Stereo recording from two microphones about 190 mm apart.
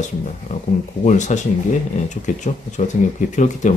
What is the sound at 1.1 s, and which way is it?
Speech, 40° left (ahead or behind).